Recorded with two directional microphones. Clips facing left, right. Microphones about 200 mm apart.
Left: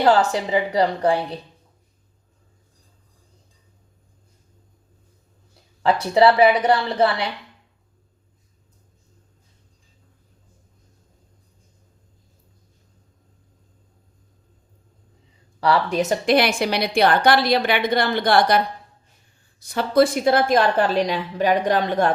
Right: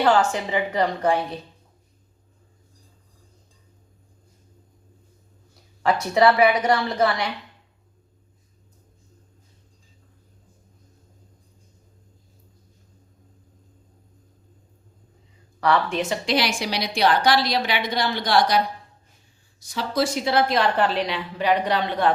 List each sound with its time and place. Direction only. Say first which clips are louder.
0.0 s a woman's voice: left 2 dB; 35° left (ahead or behind)
5.8 s a woman's voice: left 2 dB; 30° left (ahead or behind)
15.6 s a woman's voice: left 2 dB; 35° left (ahead or behind)